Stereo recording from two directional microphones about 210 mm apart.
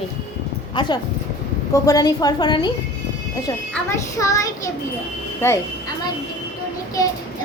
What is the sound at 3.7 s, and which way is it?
Speech, 15° left (ahead or behind).